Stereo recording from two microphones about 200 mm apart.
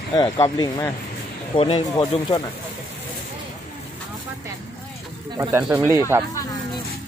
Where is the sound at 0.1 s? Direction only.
20° left (ahead or behind).